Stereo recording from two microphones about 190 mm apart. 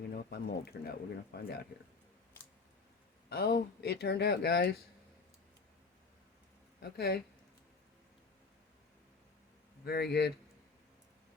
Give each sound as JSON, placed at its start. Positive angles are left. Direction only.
{"t": 0.1, "sound": "speech", "side_deg": 55}
{"t": 3.2, "sound": "speech", "side_deg": 60}
{"t": 6.9, "sound": "speech", "side_deg": 55}
{"t": 9.8, "sound": "speech", "side_deg": 60}